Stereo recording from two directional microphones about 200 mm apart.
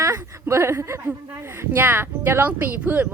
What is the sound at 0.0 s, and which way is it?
A woman's voice, 15° right (ahead or behind).